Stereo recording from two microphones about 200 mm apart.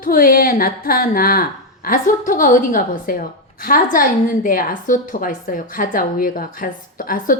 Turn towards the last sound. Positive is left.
turn(degrees=45)  # may be behind; listen again after turning